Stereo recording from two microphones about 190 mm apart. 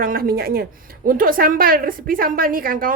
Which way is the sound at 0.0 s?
50° right (ahead or behind).